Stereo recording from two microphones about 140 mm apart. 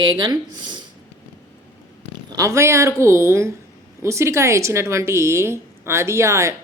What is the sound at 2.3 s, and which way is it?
A woman's voice, 20° right (ahead or behind).